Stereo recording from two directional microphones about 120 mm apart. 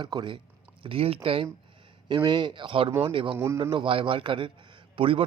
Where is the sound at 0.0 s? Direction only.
40° right (ahead or behind).